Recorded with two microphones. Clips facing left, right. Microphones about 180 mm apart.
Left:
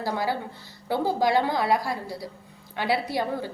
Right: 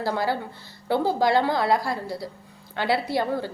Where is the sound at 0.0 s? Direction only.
15° left (ahead or behind).